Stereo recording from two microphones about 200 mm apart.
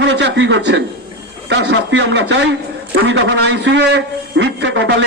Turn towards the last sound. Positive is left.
turn(degrees=-60)  # may be behind; listen again after turning